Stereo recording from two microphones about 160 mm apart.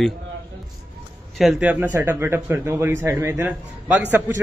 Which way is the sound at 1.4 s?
5° right (ahead or behind).